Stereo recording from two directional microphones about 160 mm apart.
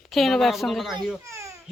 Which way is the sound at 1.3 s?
20° right (ahead or behind).